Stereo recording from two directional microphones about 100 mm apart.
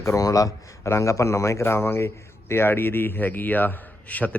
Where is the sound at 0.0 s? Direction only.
35° left (ahead or behind).